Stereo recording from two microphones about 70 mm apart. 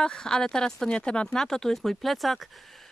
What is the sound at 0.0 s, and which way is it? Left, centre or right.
Speech, centre.